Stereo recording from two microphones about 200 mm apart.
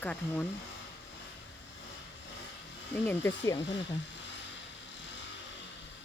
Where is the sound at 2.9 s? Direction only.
10° left (ahead or behind).